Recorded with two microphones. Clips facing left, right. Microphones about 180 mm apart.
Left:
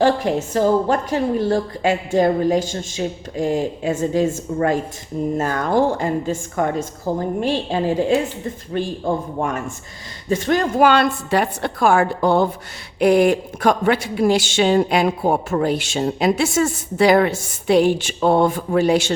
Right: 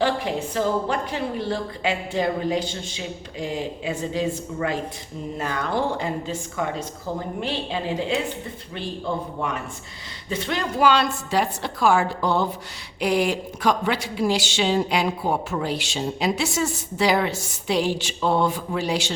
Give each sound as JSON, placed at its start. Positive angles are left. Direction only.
{"t": 0.0, "sound": "speech", "side_deg": 45}